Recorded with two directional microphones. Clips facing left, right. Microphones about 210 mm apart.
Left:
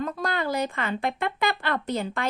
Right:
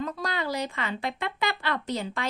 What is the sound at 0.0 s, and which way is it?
Speech, 50° left (ahead or behind).